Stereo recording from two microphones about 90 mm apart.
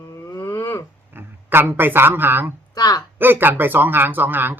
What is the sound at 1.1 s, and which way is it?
Speech, 20° right (ahead or behind).